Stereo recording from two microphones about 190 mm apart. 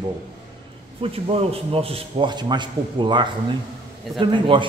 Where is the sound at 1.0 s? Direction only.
30° right (ahead or behind).